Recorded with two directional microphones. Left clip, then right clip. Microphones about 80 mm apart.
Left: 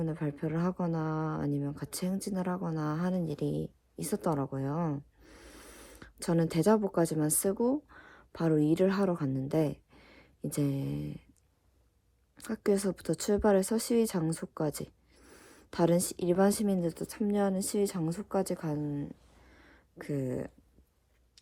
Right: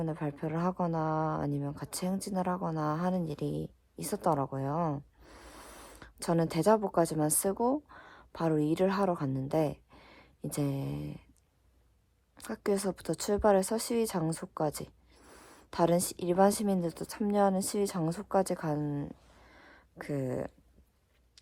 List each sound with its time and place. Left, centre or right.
0.0 s speech: right
5.2 s snort: right
6.0 s speech: right
12.4 s speech: right
14.5 s a sound: right
15.7 s speech: right
19.5 s a sound: right